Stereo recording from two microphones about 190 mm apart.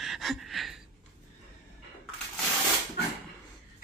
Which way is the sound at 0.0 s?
Centre (ahead or behind).